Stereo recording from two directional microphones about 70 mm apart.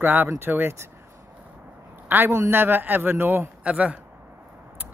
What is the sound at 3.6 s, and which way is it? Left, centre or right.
Speech, centre.